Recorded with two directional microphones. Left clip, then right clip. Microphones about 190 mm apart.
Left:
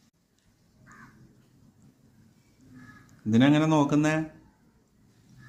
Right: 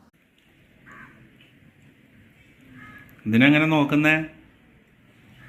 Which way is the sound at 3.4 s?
10° left (ahead or behind).